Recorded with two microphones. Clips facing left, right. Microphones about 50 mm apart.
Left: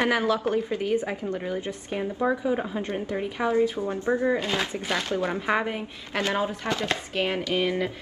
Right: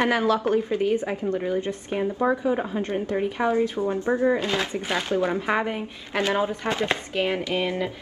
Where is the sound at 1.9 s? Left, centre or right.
Centre.